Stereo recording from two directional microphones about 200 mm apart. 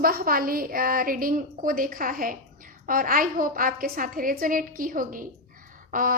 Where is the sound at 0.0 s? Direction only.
45° right (ahead or behind).